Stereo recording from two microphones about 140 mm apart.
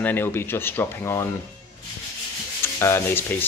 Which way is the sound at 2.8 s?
20° left (ahead or behind).